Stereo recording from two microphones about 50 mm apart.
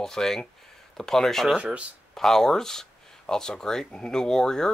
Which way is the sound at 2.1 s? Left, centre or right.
Centre.